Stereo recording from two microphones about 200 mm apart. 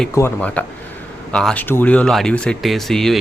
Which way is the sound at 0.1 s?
10° left (ahead or behind).